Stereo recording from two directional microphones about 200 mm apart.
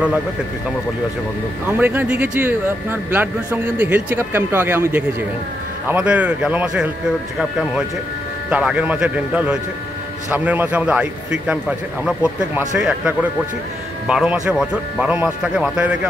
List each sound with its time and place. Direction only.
1.7 s a man's voice: 10° right (ahead or behind)